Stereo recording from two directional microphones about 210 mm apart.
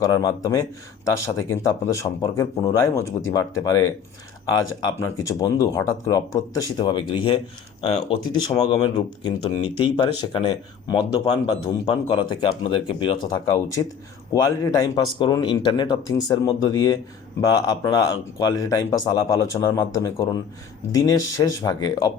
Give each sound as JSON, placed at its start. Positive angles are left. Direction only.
{"t": 0.0, "sound": "speech", "side_deg": 15}
{"t": 13.4, "sound": "speech", "side_deg": 15}